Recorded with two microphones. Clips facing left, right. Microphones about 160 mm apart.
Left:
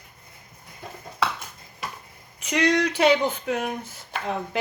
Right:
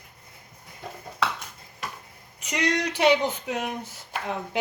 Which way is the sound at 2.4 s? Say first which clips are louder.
Left 5 dB; 20° right (ahead or behind).